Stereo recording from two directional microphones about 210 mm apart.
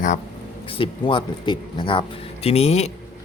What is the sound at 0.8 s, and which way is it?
Speech, 25° left (ahead or behind).